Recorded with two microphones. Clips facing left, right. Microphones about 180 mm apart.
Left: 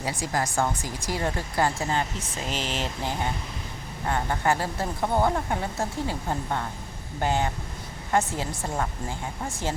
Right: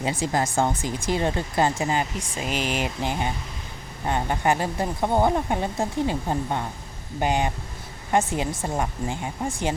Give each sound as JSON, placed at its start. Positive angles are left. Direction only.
{"t": 0.0, "sound": "speech", "side_deg": -20}